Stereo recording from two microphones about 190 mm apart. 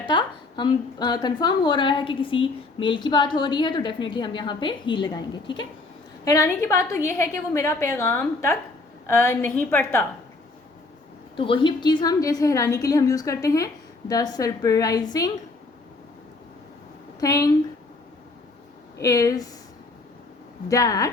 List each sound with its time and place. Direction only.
0.0 s a woman's voice: 25° left (ahead or behind)
11.3 s a woman's voice: 25° left (ahead or behind)
17.2 s a woman's voice: 20° left (ahead or behind)
18.9 s a woman's voice: 15° left (ahead or behind)
20.7 s a woman's voice: 20° left (ahead or behind)